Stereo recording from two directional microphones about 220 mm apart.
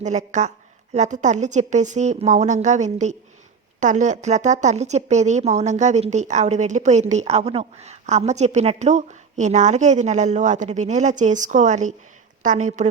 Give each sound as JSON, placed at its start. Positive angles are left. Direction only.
{"t": 0.0, "sound": "a woman's voice", "side_deg": -35}